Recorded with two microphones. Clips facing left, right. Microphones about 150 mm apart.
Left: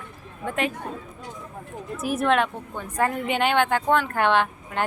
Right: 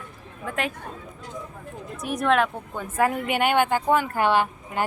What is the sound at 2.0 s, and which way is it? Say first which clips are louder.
A woman's voice: even; centre (ahead or behind).